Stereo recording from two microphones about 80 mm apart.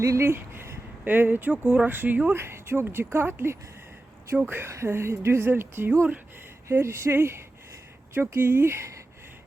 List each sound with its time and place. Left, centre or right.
0.0 s a woman's voice: right